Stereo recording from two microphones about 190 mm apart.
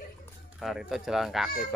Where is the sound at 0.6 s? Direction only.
Centre (ahead or behind).